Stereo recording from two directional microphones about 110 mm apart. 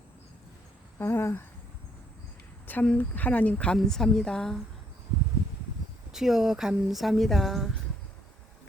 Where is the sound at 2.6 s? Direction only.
15° left (ahead or behind).